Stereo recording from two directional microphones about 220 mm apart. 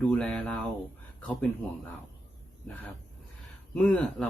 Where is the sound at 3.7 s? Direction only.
5° left (ahead or behind).